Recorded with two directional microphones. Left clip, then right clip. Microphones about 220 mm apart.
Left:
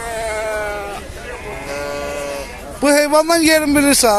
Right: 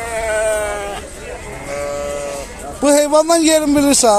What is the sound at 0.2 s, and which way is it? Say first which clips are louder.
Sheep: right 5 dB; centre (ahead or behind).